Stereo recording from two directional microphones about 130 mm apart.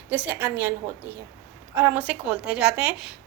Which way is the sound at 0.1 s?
15° right (ahead or behind).